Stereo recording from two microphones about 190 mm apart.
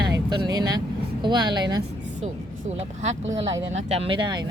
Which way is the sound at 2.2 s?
35° right (ahead or behind).